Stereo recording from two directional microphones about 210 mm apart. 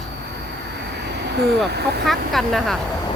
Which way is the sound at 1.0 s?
50° right (ahead or behind).